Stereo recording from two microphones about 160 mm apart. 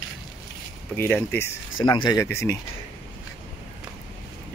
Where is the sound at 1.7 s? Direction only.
30° left (ahead or behind).